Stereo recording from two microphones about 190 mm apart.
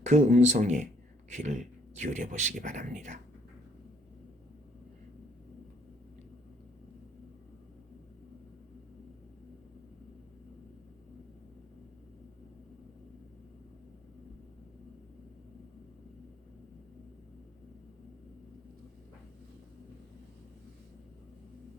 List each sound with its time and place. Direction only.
0.0 s speech: 40° right (ahead or behind)